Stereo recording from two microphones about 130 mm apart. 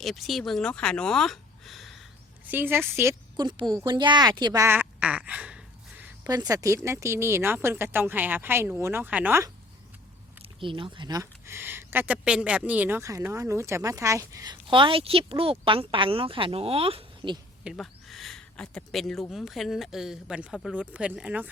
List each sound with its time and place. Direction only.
0.0 s speech: centre (ahead or behind)
2.5 s speech: 15° right (ahead or behind)
3.3 s a woman's voice: 35° right (ahead or behind)
4.6 s a sound: 15° right (ahead or behind)
6.2 s speech: 30° right (ahead or behind); by 9.4 s 10° right (ahead or behind)
10.6 s speech: 40° right (ahead or behind); by 13.0 s 10° right (ahead or behind)
13.0 s a woman's voice: 25° right (ahead or behind); by 17.3 s 45° right (ahead or behind)
17.6 s speech: 5° right (ahead or behind)